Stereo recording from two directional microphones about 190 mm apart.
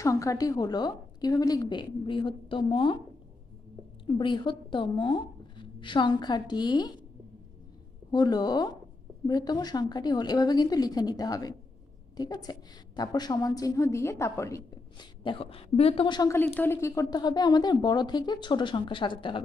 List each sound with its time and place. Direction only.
0.0 s a woman's voice: 15° left (ahead or behind)
4.0 s speech: 25° left (ahead or behind)
8.1 s a woman's voice: 20° left (ahead or behind)